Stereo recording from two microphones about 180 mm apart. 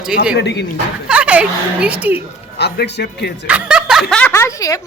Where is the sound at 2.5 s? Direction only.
70° left (ahead or behind).